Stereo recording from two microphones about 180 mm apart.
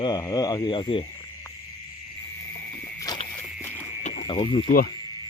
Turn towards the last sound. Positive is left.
turn(degrees=30)  # may be behind; listen again after turning